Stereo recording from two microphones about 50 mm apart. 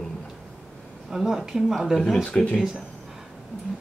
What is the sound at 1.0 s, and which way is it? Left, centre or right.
Speech, centre.